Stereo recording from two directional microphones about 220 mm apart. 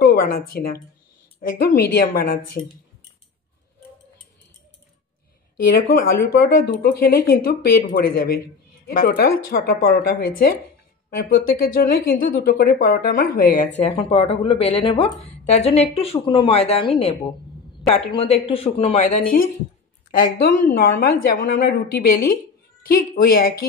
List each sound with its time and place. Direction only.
0.0 s a woman's voice: 45° left (ahead or behind)
5.7 s speech: 40° left (ahead or behind)
20.1 s speech: 40° left (ahead or behind)